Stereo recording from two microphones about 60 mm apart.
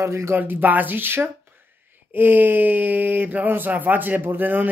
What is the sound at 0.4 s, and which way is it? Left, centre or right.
Speech, right.